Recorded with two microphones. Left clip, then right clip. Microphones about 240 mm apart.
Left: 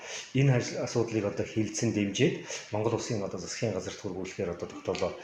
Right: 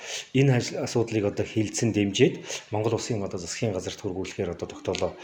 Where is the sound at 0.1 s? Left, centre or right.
Right.